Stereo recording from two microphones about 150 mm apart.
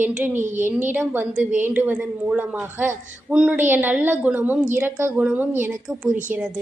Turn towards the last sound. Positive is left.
turn(degrees=-15)  # may be behind; listen again after turning